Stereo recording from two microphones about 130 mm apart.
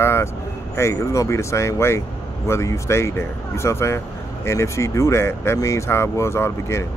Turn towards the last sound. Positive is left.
turn(degrees=20)  # may be behind; listen again after turning